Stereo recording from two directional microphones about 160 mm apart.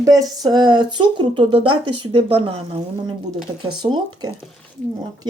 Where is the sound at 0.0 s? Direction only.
25° right (ahead or behind).